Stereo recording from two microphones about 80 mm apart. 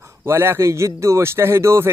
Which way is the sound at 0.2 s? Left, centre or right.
Right.